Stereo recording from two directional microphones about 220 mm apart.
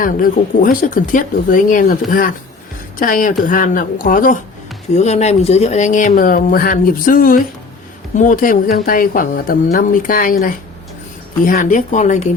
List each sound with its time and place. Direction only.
0.0 s speech: 40° left (ahead or behind)